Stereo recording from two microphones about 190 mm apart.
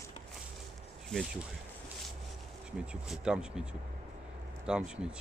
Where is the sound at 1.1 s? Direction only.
5° left (ahead or behind).